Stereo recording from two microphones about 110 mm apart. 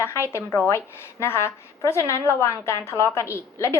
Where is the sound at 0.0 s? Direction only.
25° left (ahead or behind).